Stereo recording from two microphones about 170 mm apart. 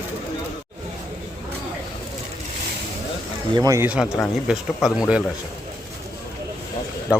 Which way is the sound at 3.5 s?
20° right (ahead or behind).